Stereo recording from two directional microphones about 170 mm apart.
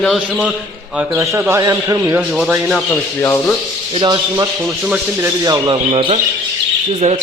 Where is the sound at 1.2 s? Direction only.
15° right (ahead or behind).